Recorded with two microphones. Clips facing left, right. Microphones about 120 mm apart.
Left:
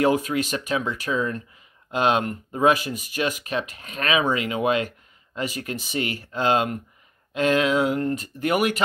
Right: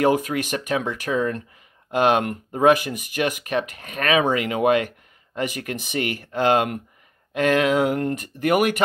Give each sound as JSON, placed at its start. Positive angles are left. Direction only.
{"t": 0.0, "sound": "speech", "side_deg": -50}